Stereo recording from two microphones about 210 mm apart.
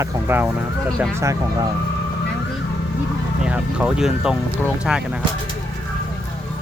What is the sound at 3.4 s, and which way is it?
Speech, 5° right (ahead or behind).